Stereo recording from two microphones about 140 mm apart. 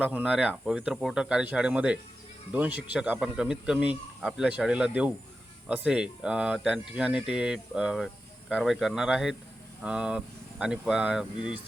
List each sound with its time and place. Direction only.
0.0 s speech: 10° right (ahead or behind)